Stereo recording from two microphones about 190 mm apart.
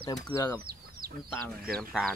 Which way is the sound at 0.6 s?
50° right (ahead or behind).